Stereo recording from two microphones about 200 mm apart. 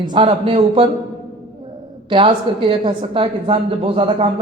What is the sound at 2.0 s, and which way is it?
A woman's voice, 25° right (ahead or behind).